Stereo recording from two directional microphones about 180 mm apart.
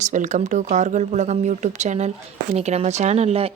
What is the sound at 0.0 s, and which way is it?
A woman's voice, 45° right (ahead or behind).